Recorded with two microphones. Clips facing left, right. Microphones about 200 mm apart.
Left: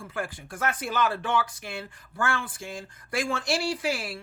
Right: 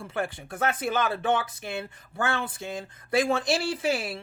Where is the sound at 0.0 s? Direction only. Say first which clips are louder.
Right 3 dB; 25° right (ahead or behind).